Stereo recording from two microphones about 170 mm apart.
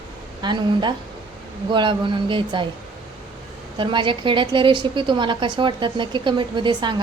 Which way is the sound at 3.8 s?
30° right (ahead or behind).